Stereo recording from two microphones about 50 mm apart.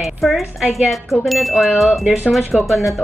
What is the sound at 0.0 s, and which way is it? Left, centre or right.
Speech, centre.